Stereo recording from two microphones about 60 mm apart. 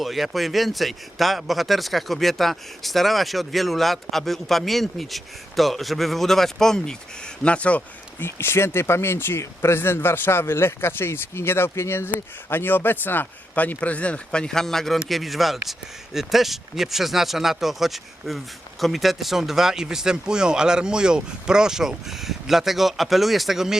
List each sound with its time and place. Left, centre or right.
0.0 s speech: centre
7.4 s speech: centre
8.2 s speech: left; by 23.7 s centre